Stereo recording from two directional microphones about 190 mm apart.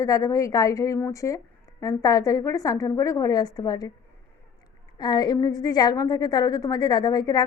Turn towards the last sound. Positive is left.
turn(degrees=20)  # may be behind; listen again after turning